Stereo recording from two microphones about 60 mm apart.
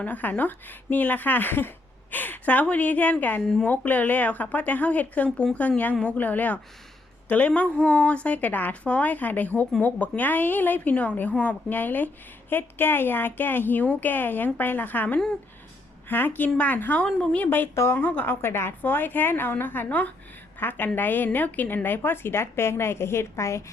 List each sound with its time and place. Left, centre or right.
0.0 s speech: left
3.4 s speech: centre
3.7 s a woman's voice: left